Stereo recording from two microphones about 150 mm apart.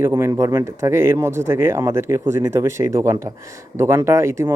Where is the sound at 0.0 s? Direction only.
15° right (ahead or behind).